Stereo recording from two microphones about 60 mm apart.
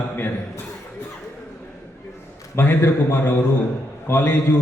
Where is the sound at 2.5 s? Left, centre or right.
Left.